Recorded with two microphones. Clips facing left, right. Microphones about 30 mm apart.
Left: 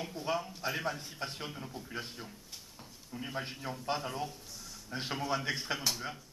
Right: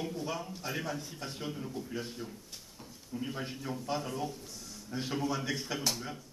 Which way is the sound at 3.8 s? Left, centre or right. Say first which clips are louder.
Even; left.